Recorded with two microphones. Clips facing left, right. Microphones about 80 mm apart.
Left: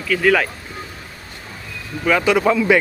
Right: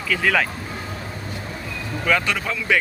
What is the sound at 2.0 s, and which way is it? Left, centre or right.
Speech, centre.